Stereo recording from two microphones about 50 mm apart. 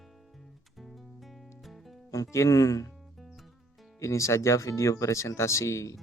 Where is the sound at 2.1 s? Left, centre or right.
Left.